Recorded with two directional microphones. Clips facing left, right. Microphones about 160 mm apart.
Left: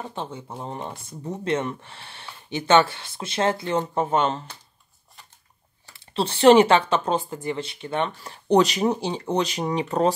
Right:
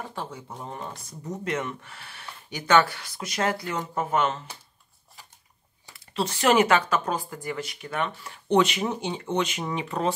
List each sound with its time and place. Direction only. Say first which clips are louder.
0.0 s speech: left 3 dB; 20° left (ahead or behind)
5.9 s speech: left 3 dB; 30° left (ahead or behind)